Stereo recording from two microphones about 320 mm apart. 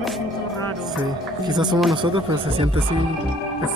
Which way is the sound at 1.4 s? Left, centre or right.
Centre.